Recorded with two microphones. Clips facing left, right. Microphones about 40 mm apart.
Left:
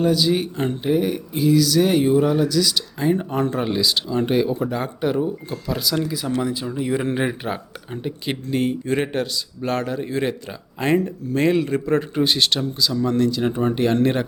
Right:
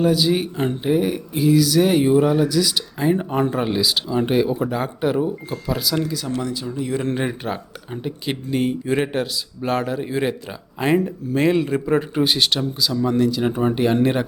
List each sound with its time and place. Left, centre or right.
0.0 s speech: centre
6.1 s speech: centre